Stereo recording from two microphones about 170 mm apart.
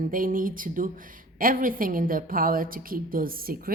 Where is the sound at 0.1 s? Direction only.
55° right (ahead or behind).